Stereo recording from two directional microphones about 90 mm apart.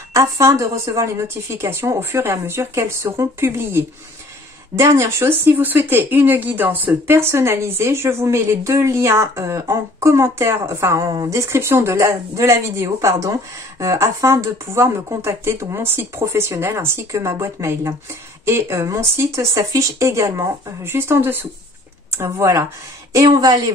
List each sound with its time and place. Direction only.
0.1 s a woman's voice: 35° right (ahead or behind)
23.1 s speech: 50° right (ahead or behind)